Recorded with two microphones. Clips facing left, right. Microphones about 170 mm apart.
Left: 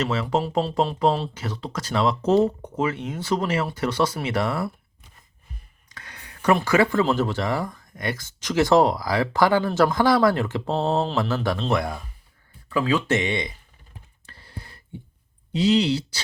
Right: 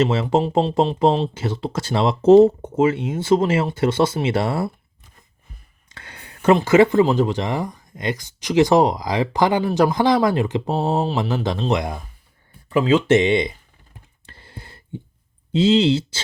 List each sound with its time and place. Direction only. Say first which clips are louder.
0.0 s speech: right 5 dB; 25° right (ahead or behind)
5.9 s speech: right 2 dB; 30° right (ahead or behind)
14.3 s a sound: right 1 dB; 25° right (ahead or behind)
15.5 s speech: right 4 dB; 25° right (ahead or behind)